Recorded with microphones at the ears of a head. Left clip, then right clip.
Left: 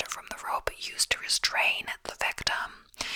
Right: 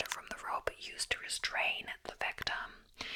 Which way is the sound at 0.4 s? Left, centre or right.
Left.